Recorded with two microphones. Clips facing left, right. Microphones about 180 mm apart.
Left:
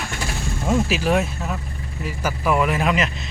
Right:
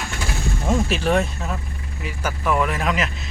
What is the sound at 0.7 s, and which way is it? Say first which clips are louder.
Speech: left 1 dB; centre (ahead or behind).